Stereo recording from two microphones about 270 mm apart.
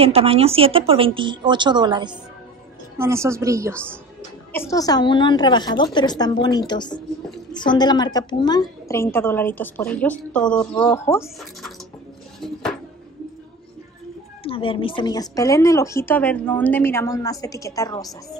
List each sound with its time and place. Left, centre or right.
0.0 s a woman's voice: right
4.5 s speech: centre
14.4 s speech: centre